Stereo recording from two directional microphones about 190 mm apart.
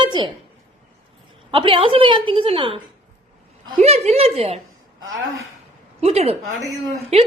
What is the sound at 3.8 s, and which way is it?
Speech, 35° right (ahead or behind).